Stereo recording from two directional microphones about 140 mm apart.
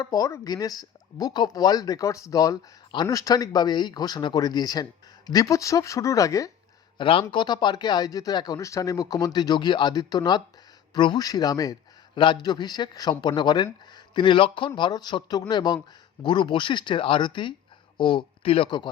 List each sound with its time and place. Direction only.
0.0 s speech: 25° left (ahead or behind)
7.0 s a man's voice: 40° left (ahead or behind)